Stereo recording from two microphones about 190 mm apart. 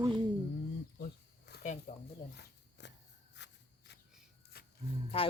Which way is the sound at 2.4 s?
65° left (ahead or behind).